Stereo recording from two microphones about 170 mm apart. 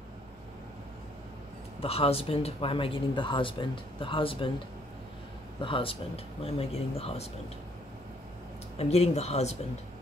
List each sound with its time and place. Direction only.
1.8 s speech: 35° left (ahead or behind)
5.6 s speech: 30° left (ahead or behind)
8.7 s speech: 40° left (ahead or behind)